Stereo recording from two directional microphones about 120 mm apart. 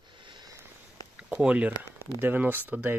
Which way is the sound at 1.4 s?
10° right (ahead or behind).